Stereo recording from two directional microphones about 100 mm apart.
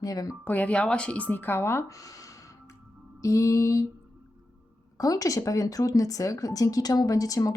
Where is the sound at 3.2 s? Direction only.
30° left (ahead or behind).